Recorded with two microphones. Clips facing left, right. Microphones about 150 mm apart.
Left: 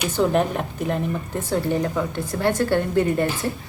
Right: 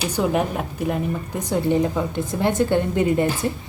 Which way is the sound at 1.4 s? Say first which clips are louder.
Right 3 dB; 20° right (ahead or behind).